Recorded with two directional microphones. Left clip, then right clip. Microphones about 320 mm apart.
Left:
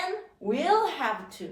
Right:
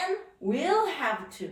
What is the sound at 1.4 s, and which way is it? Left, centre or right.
Speech, centre.